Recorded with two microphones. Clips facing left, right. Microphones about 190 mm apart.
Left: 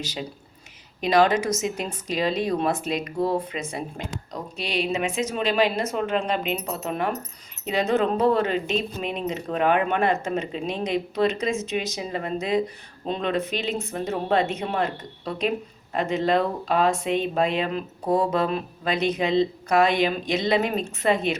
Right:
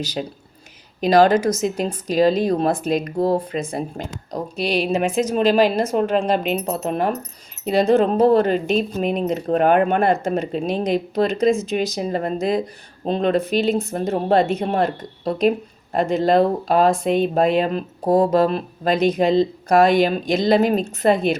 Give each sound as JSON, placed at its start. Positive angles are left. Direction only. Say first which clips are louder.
{"t": 0.0, "sound": "speech", "louder": "right 6 dB", "side_deg": -35}
{"t": 4.9, "sound": "speech", "louder": "right 6 dB", "side_deg": -55}